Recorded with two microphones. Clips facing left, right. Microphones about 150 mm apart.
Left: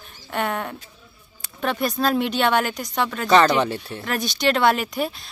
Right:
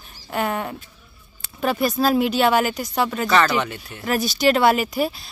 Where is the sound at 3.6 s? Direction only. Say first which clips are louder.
Left 5 dB; 35° left (ahead or behind).